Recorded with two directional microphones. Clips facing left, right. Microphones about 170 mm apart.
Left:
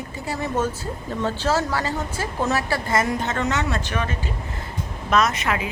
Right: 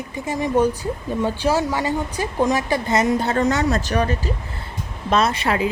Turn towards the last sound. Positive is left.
turn(degrees=-30)  # may be behind; listen again after turning